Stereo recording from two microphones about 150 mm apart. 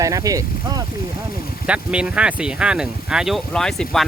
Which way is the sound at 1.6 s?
10° right (ahead or behind).